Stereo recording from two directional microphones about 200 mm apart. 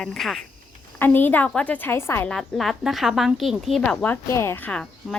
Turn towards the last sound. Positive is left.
turn(degrees=5)  # may be behind; listen again after turning